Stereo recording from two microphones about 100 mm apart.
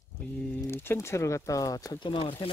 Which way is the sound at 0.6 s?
25° left (ahead or behind).